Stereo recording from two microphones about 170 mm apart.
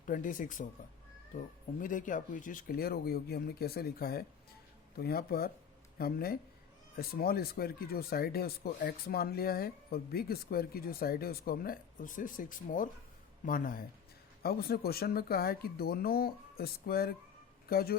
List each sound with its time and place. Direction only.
0.0 s speech: 50° left (ahead or behind)